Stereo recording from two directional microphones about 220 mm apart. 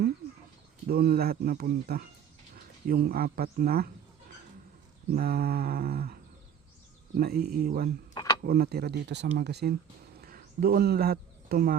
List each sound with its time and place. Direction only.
0.9 s speech: 45° right (ahead or behind)
5.1 s speech: 45° right (ahead or behind)
7.2 s speech: 45° right (ahead or behind)
8.1 s a sound: 20° left (ahead or behind)
8.4 s speech: 45° right (ahead or behind)
10.2 s a sound: 40° right (ahead or behind)